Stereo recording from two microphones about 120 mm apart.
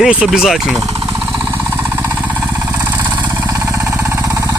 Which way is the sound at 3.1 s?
30° right (ahead or behind).